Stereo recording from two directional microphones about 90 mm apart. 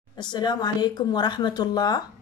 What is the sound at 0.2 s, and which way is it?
Speech, 55° left (ahead or behind).